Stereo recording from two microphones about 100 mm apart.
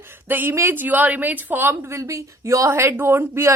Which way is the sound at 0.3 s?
20° right (ahead or behind).